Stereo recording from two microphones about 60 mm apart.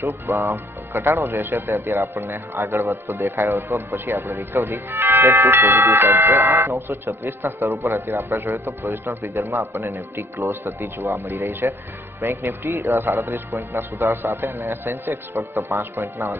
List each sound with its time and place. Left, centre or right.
0.4 s a man's voice: right
4.0 s speech: right
6.7 s a man's voice: right
11.2 s a man's voice: right